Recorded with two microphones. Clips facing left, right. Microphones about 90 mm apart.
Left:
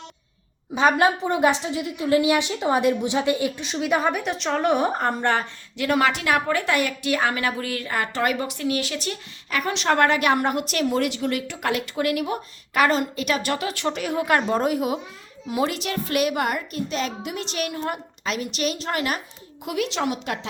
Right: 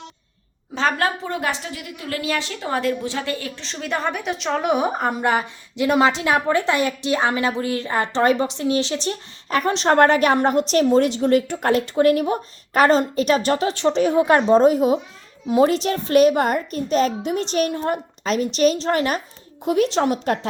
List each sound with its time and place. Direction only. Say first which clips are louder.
0.7 s a woman's voice: left 3 dB; 15° left (ahead or behind); by 20.5 s 40° right (ahead or behind)